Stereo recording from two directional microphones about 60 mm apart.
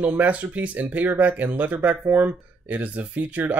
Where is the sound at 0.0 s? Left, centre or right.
Right.